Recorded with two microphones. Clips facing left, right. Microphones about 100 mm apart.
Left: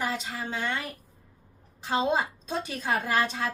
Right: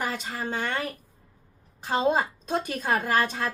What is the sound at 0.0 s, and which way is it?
A woman's voice, 50° right (ahead or behind).